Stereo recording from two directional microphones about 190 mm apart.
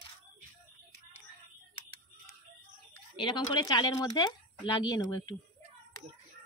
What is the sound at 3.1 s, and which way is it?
Speech, 25° left (ahead or behind).